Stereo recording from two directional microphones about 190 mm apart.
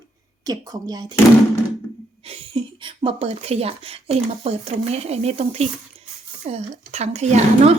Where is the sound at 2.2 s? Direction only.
30° right (ahead or behind).